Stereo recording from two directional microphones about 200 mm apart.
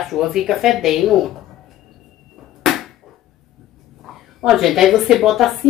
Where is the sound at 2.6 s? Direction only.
Centre (ahead or behind).